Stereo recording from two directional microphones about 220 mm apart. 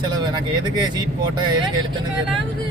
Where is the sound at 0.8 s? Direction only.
20° right (ahead or behind).